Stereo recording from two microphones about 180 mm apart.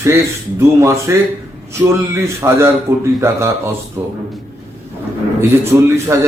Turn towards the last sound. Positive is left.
turn(degrees=-15)  # may be behind; listen again after turning